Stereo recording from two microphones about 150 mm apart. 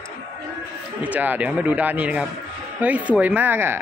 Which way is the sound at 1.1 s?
10° right (ahead or behind).